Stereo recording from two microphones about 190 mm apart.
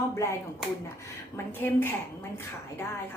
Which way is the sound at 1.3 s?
10° left (ahead or behind).